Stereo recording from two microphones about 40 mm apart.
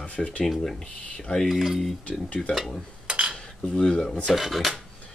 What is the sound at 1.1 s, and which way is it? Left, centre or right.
Speech, centre.